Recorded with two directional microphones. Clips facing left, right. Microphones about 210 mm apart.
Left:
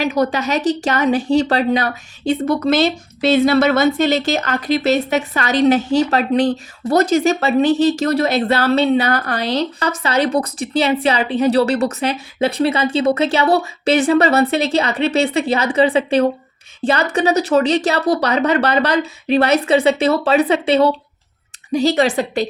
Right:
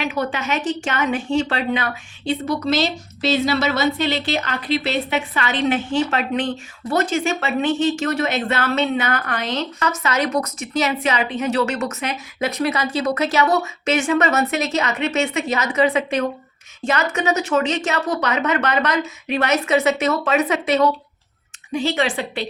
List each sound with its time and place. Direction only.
0.0 s a woman's voice: 40° left (ahead or behind)